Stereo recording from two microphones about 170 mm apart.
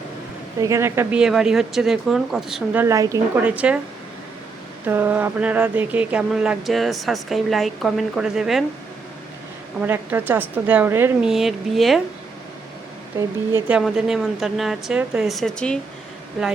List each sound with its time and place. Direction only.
0.6 s a woman's voice: 15° right (ahead or behind)
1.2 s speech: 5° right (ahead or behind)
2.8 s a woman's voice: 20° right (ahead or behind)
3.4 s a woman's voice: 5° right (ahead or behind)
4.9 s speech: 10° right (ahead or behind)
9.8 s a woman's voice: 10° right (ahead or behind)
11.3 s speech: centre (ahead or behind)
13.1 s a woman's voice: 15° right (ahead or behind)
13.7 s speech: 5° right (ahead or behind)